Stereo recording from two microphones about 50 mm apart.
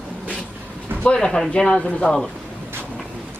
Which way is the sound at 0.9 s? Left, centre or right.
Right.